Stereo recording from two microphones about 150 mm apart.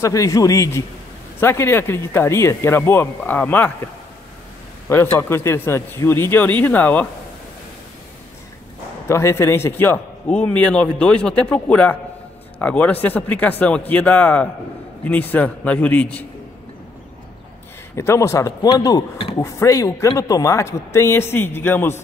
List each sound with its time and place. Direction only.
0.0 s a man's voice: 20° left (ahead or behind)
5.1 s speech: 15° left (ahead or behind)
9.0 s speech: 15° left (ahead or behind)
17.9 s a man's voice: 20° left (ahead or behind)